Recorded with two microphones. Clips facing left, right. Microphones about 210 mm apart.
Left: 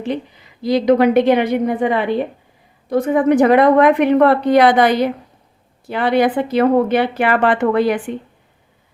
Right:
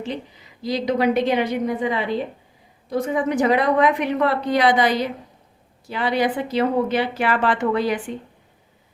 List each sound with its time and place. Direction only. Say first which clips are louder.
0.6 s a woman's voice: left 7 dB; 60° left (ahead or behind)